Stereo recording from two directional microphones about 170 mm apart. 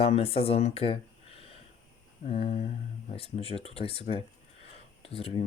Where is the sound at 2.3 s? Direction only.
35° left (ahead or behind).